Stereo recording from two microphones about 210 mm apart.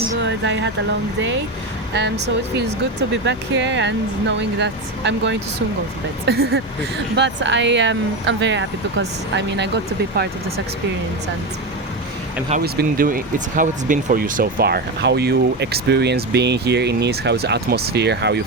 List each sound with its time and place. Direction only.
0.2 s vehicle: 60° right (ahead or behind)
1.9 s speech: 55° right (ahead or behind)
3.2 s speech: 55° right (ahead or behind)
12.5 s speech: 45° right (ahead or behind)